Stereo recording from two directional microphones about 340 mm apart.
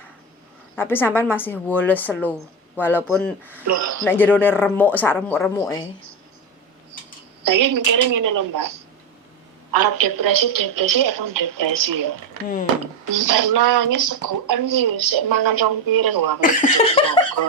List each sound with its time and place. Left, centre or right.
0.8 s speech: centre
3.7 s speech: right
4.0 s speech: centre
7.4 s a woman's voice: right
9.7 s a woman's voice: right
13.1 s a woman's voice: right
16.4 s laughter: left